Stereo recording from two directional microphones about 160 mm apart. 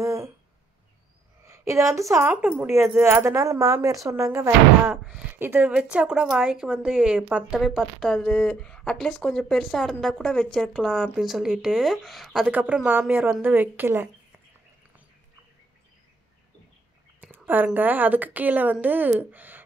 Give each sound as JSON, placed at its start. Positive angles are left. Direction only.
{"t": 0.0, "sound": "a sound", "side_deg": -20}
{"t": 1.4, "sound": "a woman's voice", "side_deg": -15}
{"t": 17.2, "sound": "a woman's voice", "side_deg": -10}